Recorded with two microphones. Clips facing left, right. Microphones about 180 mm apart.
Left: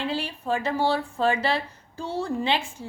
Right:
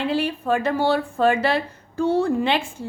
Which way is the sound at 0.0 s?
55° right (ahead or behind).